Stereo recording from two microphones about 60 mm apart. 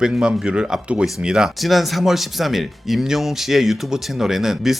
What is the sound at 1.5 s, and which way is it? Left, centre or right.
Speech, centre.